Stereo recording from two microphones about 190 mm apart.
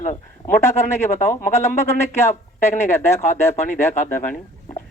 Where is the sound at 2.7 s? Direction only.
15° left (ahead or behind).